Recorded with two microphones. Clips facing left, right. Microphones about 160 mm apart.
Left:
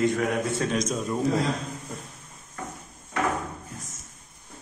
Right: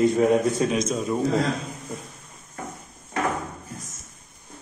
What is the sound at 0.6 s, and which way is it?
Speech, 5° right (ahead or behind).